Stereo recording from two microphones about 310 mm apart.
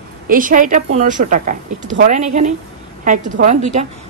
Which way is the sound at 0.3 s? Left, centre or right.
Right.